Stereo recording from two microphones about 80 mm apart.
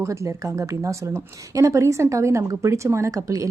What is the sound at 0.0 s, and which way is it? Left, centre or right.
A woman's voice, right.